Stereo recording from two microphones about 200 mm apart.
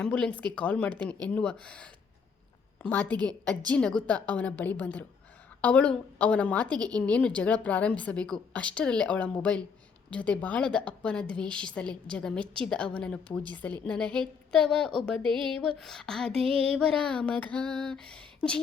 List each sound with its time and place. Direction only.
0.0 s a woman's voice: 5° left (ahead or behind)
16.3 s a sound: 30° right (ahead or behind)
16.7 s a woman's voice: 5° left (ahead or behind)